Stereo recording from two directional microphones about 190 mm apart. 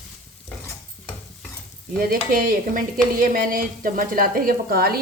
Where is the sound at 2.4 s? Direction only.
45° right (ahead or behind).